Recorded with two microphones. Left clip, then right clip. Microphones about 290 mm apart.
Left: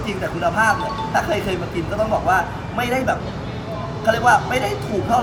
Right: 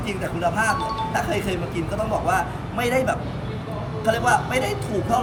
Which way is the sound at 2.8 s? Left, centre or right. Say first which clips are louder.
Even; centre.